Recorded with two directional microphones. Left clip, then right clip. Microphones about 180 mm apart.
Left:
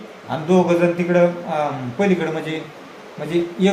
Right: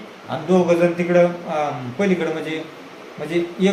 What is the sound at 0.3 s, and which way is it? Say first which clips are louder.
A man's voice: even; 20° left (ahead or behind).